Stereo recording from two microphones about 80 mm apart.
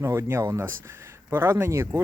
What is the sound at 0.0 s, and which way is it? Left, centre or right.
Speech, right.